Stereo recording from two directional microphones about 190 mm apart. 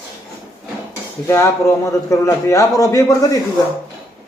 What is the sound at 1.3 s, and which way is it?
A man's voice, 15° left (ahead or behind).